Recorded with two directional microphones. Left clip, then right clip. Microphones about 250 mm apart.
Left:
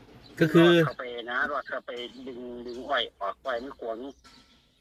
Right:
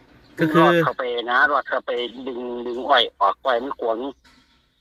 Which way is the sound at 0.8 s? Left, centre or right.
Right.